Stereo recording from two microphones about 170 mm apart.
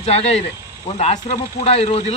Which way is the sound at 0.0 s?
40° left (ahead or behind).